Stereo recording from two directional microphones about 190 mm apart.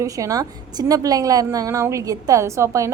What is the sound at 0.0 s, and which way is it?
A woman's voice, 15° right (ahead or behind).